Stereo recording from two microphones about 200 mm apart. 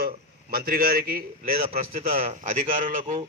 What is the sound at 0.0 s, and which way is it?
A man's voice, 50° right (ahead or behind).